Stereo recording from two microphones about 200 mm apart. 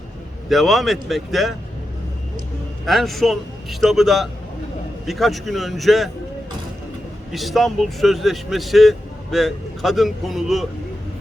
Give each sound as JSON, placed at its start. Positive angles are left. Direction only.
{"t": 0.4, "sound": "speech", "side_deg": 0}
{"t": 2.8, "sound": "speech", "side_deg": 0}
{"t": 7.3, "sound": "speech", "side_deg": 0}